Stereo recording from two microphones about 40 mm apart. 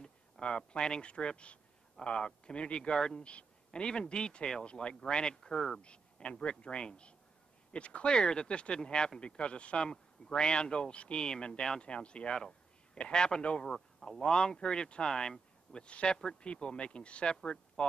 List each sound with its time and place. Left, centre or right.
0.0 s a man's voice: left
5.8 s speech: left
13.7 s speech: centre
14.0 s speech: left